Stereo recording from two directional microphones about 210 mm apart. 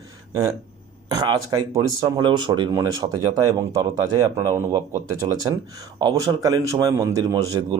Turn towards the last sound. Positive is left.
turn(degrees=-20)  # may be behind; listen again after turning